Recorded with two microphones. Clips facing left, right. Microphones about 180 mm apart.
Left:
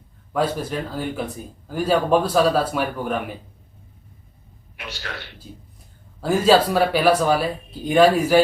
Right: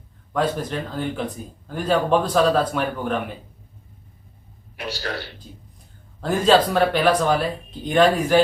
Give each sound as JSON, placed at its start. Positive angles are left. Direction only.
{"t": 0.3, "sound": "a man's voice", "side_deg": 5}
{"t": 4.8, "sound": "a man's voice", "side_deg": -35}
{"t": 6.2, "sound": "a man's voice", "side_deg": 5}